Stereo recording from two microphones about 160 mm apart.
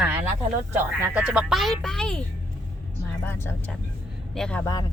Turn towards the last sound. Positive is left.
turn(degrees=25)  # may be behind; listen again after turning